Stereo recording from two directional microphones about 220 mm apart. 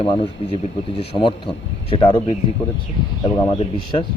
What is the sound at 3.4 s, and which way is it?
Speech, 20° left (ahead or behind).